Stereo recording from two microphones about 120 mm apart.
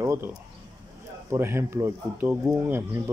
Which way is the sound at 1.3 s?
20° right (ahead or behind).